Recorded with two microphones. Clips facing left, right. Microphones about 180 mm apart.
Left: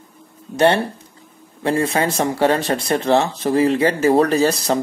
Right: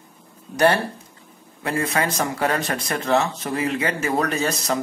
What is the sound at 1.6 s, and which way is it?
Speech, 30° left (ahead or behind).